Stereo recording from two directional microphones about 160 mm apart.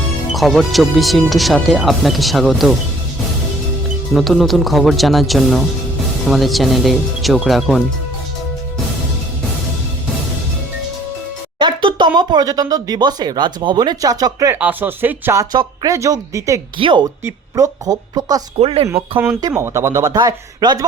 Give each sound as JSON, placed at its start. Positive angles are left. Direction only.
{"t": 0.3, "sound": "speech", "side_deg": 0}
{"t": 4.1, "sound": "speech", "side_deg": 0}
{"t": 11.6, "sound": "speech", "side_deg": -30}
{"t": 16.7, "sound": "a woman's voice", "side_deg": -30}
{"t": 18.6, "sound": "a woman's voice", "side_deg": -35}
{"t": 19.4, "sound": "speech", "side_deg": -20}